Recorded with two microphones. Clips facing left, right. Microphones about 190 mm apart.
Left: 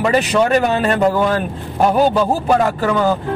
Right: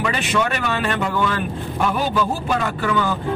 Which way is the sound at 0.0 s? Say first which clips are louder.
Left 7 dB; 40° left (ahead or behind).